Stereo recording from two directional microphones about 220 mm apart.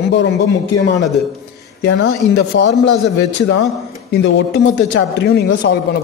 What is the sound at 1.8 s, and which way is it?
A man's voice, 50° left (ahead or behind).